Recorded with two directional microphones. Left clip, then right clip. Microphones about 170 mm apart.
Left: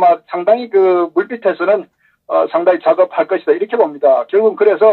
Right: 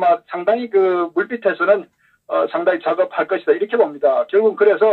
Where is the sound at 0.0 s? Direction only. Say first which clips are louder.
Left 4 dB; 45° left (ahead or behind).